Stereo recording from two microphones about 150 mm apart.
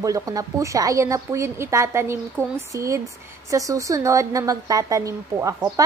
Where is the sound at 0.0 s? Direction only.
25° right (ahead or behind).